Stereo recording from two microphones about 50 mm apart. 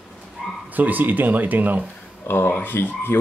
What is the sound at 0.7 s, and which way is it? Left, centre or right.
Speech, right.